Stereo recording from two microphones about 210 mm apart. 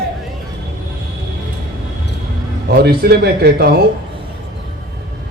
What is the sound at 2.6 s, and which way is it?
Speech, 50° right (ahead or behind).